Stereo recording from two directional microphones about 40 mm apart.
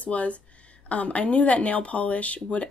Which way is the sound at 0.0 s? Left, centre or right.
Left.